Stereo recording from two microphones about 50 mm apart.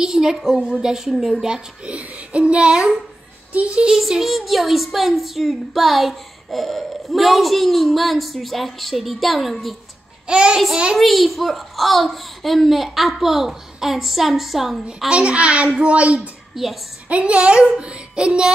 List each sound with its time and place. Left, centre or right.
0.0 s a woman's voice: centre
1.9 s a child's voice: right
3.5 s child singing: right
3.9 s a woman's voice: centre
10.2 s child singing: centre
11.0 s a woman's voice: centre
15.0 s child singing: right
16.5 s a woman's voice: centre
17.1 s child singing: right